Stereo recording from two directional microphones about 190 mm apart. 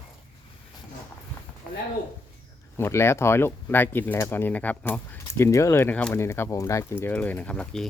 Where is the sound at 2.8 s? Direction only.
15° left (ahead or behind).